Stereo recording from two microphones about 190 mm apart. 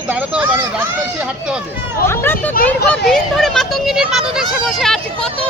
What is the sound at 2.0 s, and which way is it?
Speech, 10° left (ahead or behind).